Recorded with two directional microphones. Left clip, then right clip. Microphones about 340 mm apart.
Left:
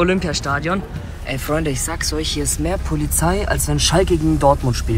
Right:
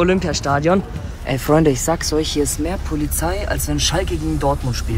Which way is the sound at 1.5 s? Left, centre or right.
Left.